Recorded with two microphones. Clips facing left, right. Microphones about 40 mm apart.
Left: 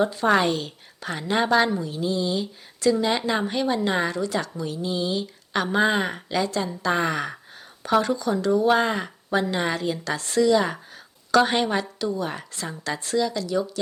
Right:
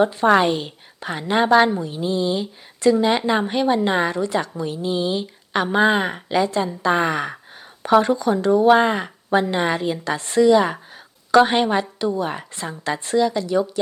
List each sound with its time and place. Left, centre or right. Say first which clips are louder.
0.0 s a woman's voice: right 4 dB; right
7.8 s a woman's voice: right 5 dB; right